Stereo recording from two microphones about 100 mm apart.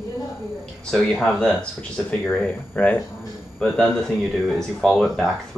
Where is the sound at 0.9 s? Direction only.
5° left (ahead or behind).